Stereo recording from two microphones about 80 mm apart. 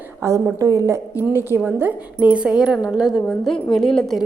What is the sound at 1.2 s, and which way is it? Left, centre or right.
A woman's voice, right.